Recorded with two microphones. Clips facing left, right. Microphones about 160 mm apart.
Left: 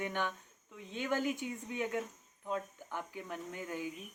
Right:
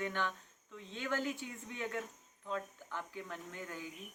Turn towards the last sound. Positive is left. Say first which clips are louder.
# left 5 dB
turn(degrees=20)  # may be behind; listen again after turning